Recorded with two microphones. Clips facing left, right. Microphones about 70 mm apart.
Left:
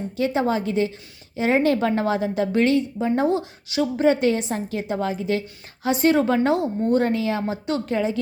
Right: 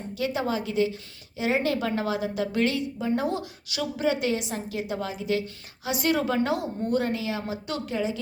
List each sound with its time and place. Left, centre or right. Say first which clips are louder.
0.2 s a woman's voice: left 6 dB; left
3.2 s a woman's voice: left 7 dB; left